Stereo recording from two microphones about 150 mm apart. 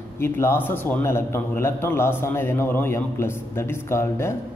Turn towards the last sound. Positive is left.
turn(degrees=15)  # may be behind; listen again after turning